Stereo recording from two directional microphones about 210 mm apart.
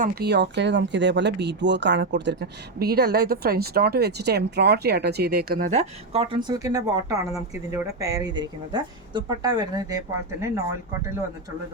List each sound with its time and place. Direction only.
0.0 s speech: 45° right (ahead or behind); by 10.0 s 15° right (ahead or behind)